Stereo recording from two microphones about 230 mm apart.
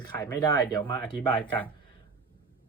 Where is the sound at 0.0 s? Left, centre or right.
Centre.